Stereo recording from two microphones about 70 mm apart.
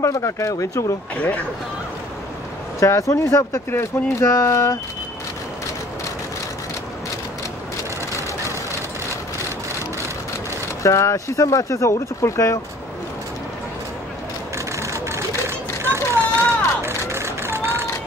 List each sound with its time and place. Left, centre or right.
0.0 s speech: left
2.8 s speech: left
10.8 s speech: left
14.8 s vehicle: right
15.8 s run: right